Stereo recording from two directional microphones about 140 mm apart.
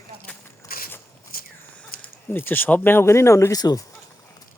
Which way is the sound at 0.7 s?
90° left.